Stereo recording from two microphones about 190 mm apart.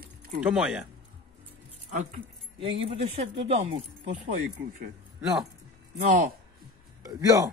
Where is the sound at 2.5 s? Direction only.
30° right (ahead or behind).